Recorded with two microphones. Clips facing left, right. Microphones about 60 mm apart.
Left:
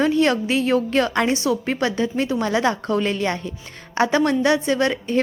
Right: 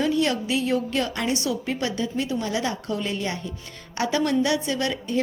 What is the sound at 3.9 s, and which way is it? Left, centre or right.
A woman's voice, left.